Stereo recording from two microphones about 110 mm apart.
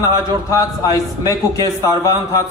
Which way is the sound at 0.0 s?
30° left (ahead or behind).